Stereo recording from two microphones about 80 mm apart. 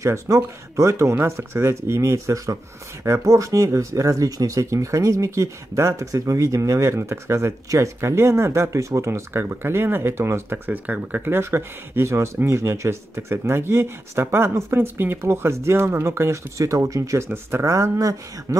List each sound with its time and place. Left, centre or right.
0.0 s speech: right
10.7 s speech: right